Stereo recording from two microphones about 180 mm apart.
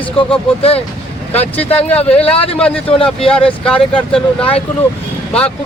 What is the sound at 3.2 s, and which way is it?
Speech, 5° left (ahead or behind).